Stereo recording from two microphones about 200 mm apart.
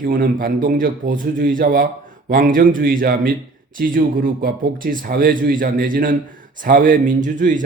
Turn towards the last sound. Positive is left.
turn(degrees=-40)  # may be behind; listen again after turning